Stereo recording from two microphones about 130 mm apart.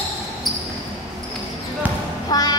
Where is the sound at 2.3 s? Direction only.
30° left (ahead or behind).